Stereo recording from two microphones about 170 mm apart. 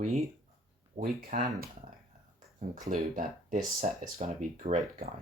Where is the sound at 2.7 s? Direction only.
50° right (ahead or behind).